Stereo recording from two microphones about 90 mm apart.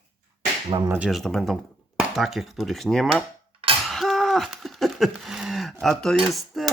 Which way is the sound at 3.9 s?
Centre (ahead or behind).